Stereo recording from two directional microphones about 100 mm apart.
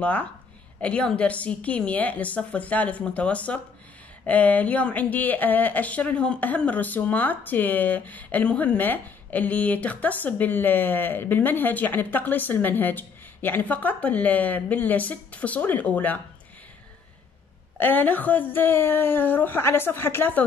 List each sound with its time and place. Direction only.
0.0 s speech: 15° left (ahead or behind)
17.7 s a woman's voice: 20° left (ahead or behind)